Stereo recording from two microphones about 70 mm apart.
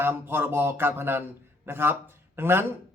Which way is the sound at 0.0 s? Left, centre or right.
Right.